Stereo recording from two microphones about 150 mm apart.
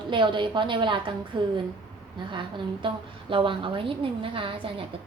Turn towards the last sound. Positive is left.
turn(degrees=-35)  # may be behind; listen again after turning